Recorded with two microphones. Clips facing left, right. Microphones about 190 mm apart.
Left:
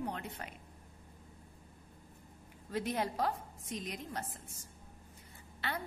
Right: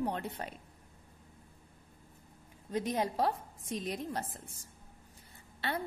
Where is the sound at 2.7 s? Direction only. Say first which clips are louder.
Right 3 dB; 20° right (ahead or behind).